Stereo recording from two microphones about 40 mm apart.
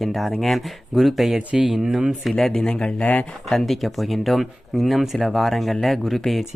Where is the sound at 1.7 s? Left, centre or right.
Centre.